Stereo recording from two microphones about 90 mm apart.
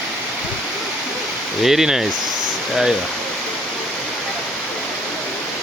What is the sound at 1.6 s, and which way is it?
Speech, 5° right (ahead or behind).